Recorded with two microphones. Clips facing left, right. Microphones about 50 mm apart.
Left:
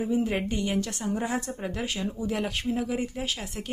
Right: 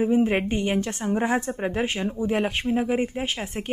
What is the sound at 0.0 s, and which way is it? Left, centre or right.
A woman's voice, right.